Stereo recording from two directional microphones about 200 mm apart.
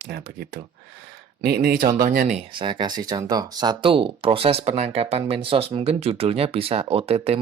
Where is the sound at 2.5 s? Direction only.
25° right (ahead or behind).